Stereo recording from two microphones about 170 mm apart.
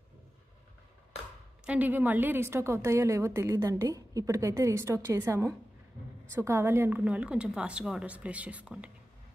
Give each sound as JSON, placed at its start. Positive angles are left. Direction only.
{"t": 1.7, "sound": "a woman's voice", "side_deg": -10}